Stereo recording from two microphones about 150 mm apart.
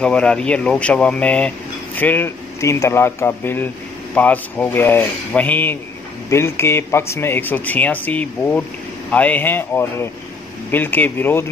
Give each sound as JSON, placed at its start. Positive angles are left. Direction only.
{"t": 0.0, "sound": "speech", "side_deg": 5}